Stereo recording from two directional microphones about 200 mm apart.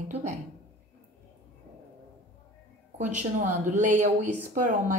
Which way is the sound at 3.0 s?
40° right (ahead or behind).